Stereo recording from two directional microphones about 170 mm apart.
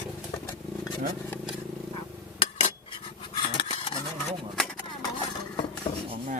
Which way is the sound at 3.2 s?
30° left (ahead or behind).